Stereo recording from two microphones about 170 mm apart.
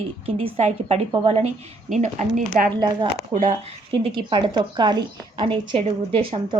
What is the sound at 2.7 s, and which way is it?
Speech, 25° right (ahead or behind).